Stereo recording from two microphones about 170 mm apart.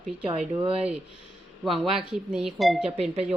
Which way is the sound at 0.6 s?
35° right (ahead or behind).